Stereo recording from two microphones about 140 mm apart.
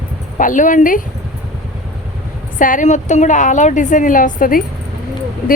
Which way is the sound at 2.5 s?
70° left (ahead or behind).